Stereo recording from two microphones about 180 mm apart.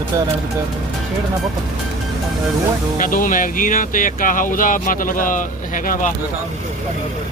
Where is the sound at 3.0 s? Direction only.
50° left (ahead or behind).